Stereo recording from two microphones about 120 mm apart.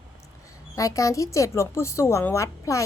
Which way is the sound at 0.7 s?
30° left (ahead or behind).